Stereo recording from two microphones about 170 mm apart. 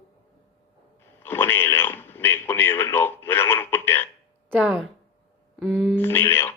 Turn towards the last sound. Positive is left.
turn(degrees=15)  # may be behind; listen again after turning